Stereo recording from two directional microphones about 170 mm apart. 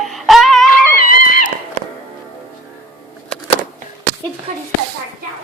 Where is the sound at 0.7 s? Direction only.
55° left (ahead or behind).